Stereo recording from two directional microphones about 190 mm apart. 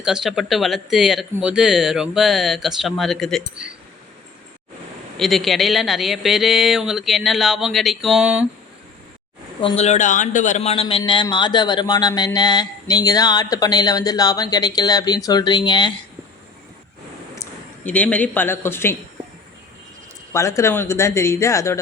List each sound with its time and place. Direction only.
0.0 s speech: 5° right (ahead or behind)
5.1 s speech: centre (ahead or behind)
9.6 s a man's voice: 30° left (ahead or behind)
17.3 s speech: 10° left (ahead or behind)
20.3 s speech: 15° left (ahead or behind)